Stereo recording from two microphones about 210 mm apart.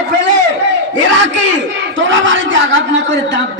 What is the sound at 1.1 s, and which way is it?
A man's voice, 60° right (ahead or behind).